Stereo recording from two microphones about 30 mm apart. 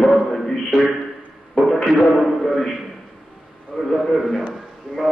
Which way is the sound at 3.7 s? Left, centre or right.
Left.